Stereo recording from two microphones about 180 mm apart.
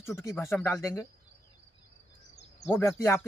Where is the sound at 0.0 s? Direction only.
15° left (ahead or behind).